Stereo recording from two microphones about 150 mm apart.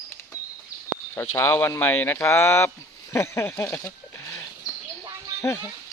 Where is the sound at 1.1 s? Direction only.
15° left (ahead or behind).